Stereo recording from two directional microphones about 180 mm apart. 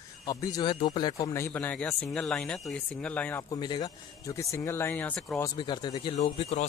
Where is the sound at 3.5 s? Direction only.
25° left (ahead or behind); by 5.3 s 5° left (ahead or behind).